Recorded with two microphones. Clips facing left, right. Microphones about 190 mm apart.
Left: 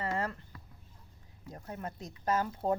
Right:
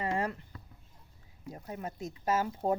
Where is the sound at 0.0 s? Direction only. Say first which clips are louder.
Right 2 dB; 15° right (ahead or behind).